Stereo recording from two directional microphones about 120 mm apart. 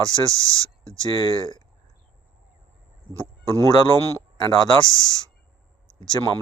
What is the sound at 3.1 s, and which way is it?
Speech, 30° right (ahead or behind).